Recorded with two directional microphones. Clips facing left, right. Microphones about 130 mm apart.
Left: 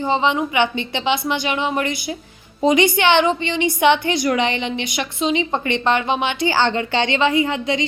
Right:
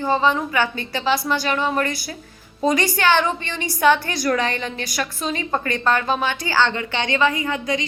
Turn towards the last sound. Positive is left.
turn(degrees=30)  # may be behind; listen again after turning